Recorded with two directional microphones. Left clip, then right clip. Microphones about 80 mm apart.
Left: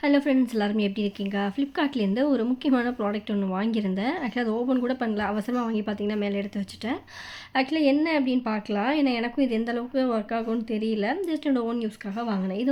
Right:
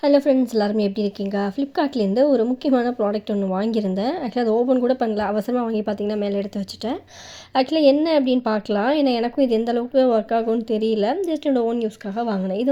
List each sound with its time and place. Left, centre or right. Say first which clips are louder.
0.0 s a woman's voice: right 6 dB; right
3.3 s speech: right 6 dB; centre
3.6 s a woman's voice: right 6 dB; right
5.7 s a woman's voice: right 6 dB; right
7.5 s a woman's voice: right 7 dB; right